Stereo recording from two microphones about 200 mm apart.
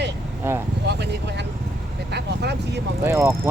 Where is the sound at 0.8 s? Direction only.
55° right (ahead or behind).